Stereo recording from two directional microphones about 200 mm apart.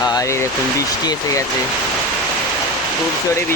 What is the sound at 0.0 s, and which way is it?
Speech, 20° left (ahead or behind).